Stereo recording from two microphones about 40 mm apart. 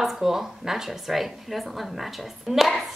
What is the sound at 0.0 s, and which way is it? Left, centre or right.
A woman's voice, centre.